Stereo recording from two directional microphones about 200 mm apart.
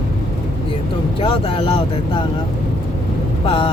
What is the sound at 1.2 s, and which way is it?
Vehicle, 25° left (ahead or behind).